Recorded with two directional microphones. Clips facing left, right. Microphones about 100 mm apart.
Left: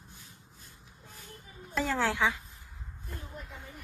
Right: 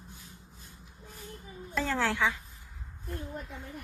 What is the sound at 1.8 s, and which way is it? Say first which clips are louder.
Speech: even; 15° left (ahead or behind).